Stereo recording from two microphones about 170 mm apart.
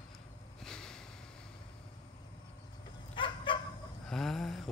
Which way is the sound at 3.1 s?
30° left (ahead or behind).